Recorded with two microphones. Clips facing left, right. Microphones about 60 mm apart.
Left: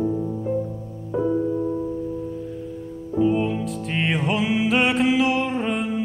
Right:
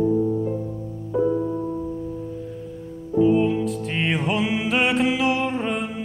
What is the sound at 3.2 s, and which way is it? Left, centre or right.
Music, centre.